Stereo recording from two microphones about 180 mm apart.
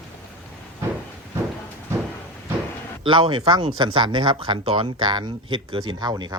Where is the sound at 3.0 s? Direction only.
25° right (ahead or behind).